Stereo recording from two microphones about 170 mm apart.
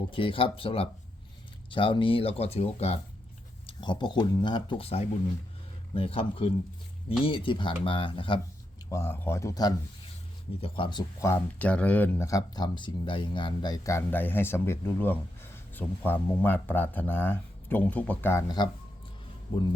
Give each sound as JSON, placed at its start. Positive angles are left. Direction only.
{"t": 0.1, "sound": "speech", "side_deg": 30}
{"t": 3.7, "sound": "speech", "side_deg": 25}
{"t": 8.9, "sound": "speech", "side_deg": 15}
{"t": 11.2, "sound": "speech", "side_deg": 15}
{"t": 18.4, "sound": "speech", "side_deg": 25}